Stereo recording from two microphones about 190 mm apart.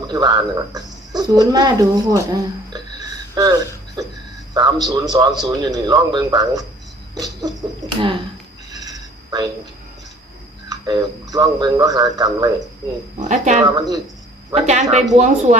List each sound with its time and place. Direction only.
0.1 s speech: 20° right (ahead or behind)
3.3 s a man's voice: 20° right (ahead or behind)
7.8 s a sound: 20° right (ahead or behind)
10.7 s a man's voice: 20° right (ahead or behind)
13.1 s speech: 40° right (ahead or behind)
13.7 s a man's voice: 20° right (ahead or behind)
14.5 s speech: 35° right (ahead or behind)